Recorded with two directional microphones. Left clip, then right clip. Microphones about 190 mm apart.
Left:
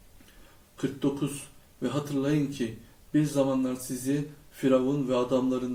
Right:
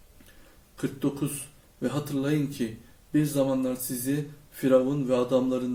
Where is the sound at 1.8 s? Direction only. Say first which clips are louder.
Even; 25° right (ahead or behind).